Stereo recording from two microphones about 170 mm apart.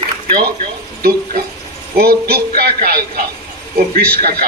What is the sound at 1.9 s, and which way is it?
Speech, 65° right (ahead or behind).